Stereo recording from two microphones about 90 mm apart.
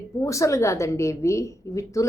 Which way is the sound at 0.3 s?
35° left (ahead or behind).